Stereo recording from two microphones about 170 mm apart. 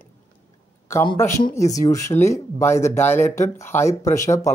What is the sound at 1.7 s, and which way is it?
A man's voice, 20° left (ahead or behind).